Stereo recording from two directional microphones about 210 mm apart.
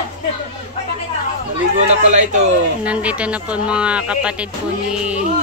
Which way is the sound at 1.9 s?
35° right (ahead or behind).